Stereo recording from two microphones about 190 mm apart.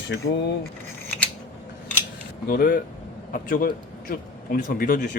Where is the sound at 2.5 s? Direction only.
50° left (ahead or behind).